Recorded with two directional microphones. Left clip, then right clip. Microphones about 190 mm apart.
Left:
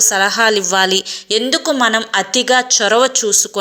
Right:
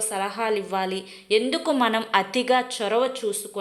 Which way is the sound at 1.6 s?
10° left (ahead or behind).